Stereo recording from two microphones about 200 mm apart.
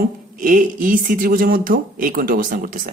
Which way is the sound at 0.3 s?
40° right (ahead or behind).